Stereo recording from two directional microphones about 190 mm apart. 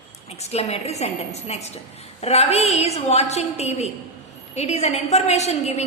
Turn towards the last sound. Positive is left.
turn(degrees=35)  # may be behind; listen again after turning